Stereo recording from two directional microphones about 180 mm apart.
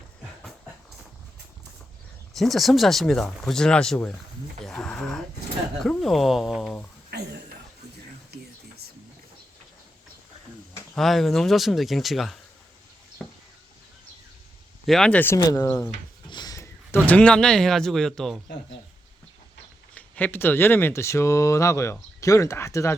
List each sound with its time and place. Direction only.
2.3 s speech: centre (ahead or behind)
4.6 s a sound: 5° left (ahead or behind)
7.1 s a sound: 65° right (ahead or behind)
10.9 s speech: centre (ahead or behind)
14.8 s speech: 5° left (ahead or behind)
15.4 s speech: 20° left (ahead or behind); by 18.3 s 5° left (ahead or behind)
19.9 s speech: 10° left (ahead or behind)